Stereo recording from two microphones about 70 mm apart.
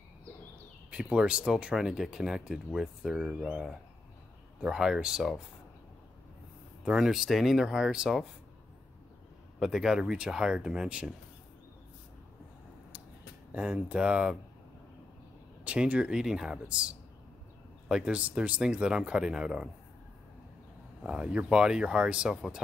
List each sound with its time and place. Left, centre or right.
0.8 s speech: centre
6.8 s speech: centre
9.6 s speech: centre
13.5 s speech: centre
15.6 s speech: centre
21.0 s speech: centre